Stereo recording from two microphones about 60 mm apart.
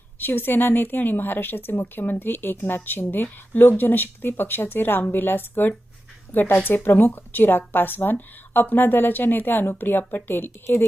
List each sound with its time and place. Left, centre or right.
0.2 s speech: left